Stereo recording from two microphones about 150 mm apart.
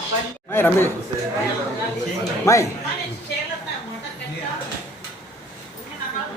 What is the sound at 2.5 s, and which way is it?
Speech, 20° left (ahead or behind).